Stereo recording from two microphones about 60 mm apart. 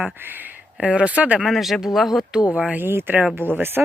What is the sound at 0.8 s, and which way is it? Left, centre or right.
Speech, centre.